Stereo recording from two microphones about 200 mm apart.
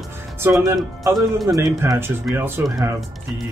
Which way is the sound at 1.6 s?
15° right (ahead or behind).